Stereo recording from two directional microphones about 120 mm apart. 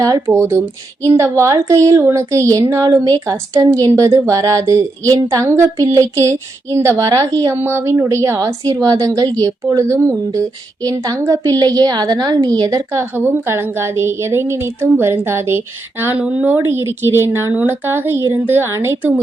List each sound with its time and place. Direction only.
0.0 s a woman's voice: 25° right (ahead or behind)